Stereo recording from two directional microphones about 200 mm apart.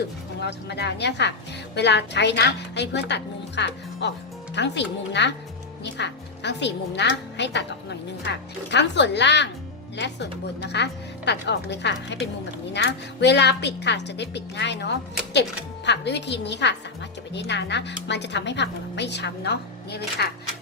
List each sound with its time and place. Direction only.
0.3 s a woman's voice: 55° left (ahead or behind)